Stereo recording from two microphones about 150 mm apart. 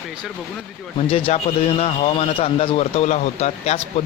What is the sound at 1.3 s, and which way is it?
A man's voice, 45° left (ahead or behind).